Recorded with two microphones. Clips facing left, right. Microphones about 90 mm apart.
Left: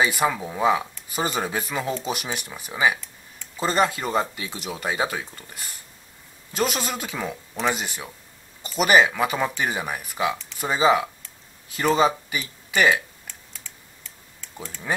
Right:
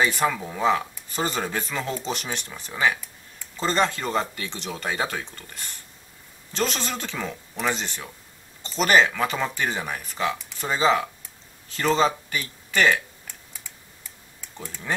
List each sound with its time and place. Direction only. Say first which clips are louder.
0.0 s speech: left 1 dB; 10° left (ahead or behind)
13.5 s computer keyboard: even; 15° right (ahead or behind)